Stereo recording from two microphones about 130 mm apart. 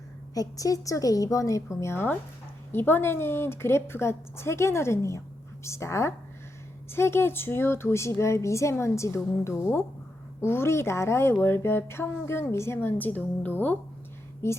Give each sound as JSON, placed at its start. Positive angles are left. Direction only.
{"t": 0.3, "sound": "a woman's voice", "side_deg": 25}